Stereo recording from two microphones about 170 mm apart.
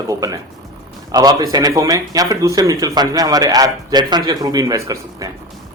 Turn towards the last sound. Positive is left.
turn(degrees=-20)  # may be behind; listen again after turning